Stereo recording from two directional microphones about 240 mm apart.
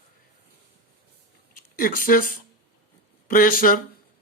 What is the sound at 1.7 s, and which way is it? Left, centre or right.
Speech, left.